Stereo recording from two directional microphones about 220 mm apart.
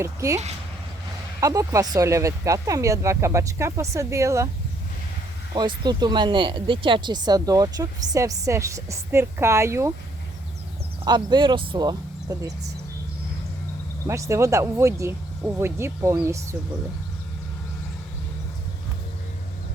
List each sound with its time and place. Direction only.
0.0 s speech: 15° right (ahead or behind)
1.4 s speech: 15° right (ahead or behind)
5.5 s speech: 20° right (ahead or behind)
11.0 s speech: 20° right (ahead or behind)
14.1 s speech: 15° right (ahead or behind)